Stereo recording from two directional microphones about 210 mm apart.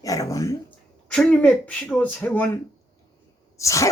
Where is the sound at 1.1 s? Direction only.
5° left (ahead or behind).